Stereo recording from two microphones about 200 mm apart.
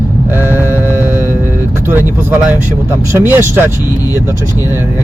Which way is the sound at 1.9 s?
10° right (ahead or behind).